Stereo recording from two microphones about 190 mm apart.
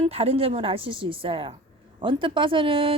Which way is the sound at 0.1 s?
30° right (ahead or behind).